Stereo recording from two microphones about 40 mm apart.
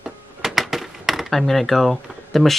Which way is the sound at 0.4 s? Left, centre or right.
Centre.